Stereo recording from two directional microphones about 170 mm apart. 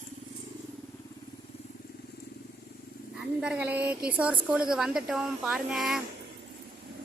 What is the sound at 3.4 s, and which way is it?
A woman's voice, 5° right (ahead or behind).